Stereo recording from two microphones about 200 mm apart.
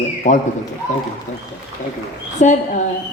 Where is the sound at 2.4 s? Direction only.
35° left (ahead or behind).